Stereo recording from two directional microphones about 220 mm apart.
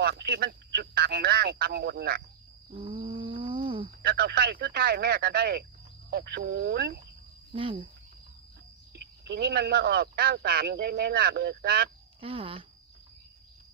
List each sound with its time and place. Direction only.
0.0 s speech: 45° right (ahead or behind)
2.7 s roaring cats: 25° right (ahead or behind)
4.0 s speech: 45° right (ahead or behind)
7.5 s speech: 25° right (ahead or behind)
9.2 s speech: 50° right (ahead or behind)
12.2 s speech: 25° right (ahead or behind)